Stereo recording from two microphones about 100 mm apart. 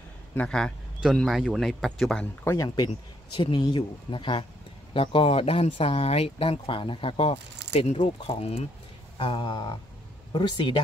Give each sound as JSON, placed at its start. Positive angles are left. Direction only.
{"t": 0.5, "sound": "a man's voice", "side_deg": 5}
{"t": 2.4, "sound": "a man's voice", "side_deg": 35}
{"t": 4.9, "sound": "speech", "side_deg": 65}
{"t": 9.2, "sound": "speech", "side_deg": 55}